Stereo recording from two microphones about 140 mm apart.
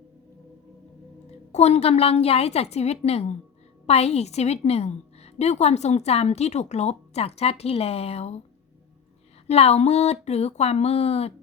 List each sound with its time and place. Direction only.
1.5 s a woman's voice: 50° left (ahead or behind)
9.5 s a woman's voice: 50° left (ahead or behind)